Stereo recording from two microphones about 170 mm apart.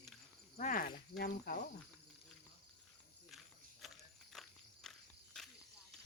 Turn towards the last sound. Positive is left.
turn(degrees=0)  # may be behind; listen again after turning